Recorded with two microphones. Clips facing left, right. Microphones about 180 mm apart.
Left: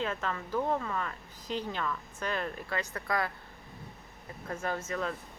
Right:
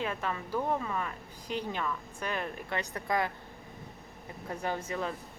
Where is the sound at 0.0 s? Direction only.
15° right (ahead or behind).